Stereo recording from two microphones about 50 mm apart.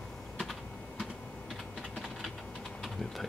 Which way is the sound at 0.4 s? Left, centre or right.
Centre.